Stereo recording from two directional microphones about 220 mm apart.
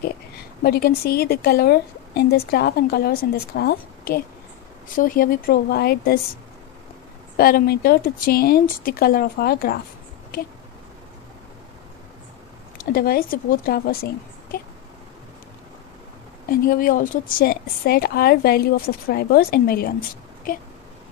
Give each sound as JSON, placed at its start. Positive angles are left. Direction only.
{"t": 0.6, "sound": "a woman's voice", "side_deg": 45}
{"t": 7.3, "sound": "a woman's voice", "side_deg": 45}
{"t": 12.7, "sound": "a woman's voice", "side_deg": 45}
{"t": 16.4, "sound": "a woman's voice", "side_deg": 40}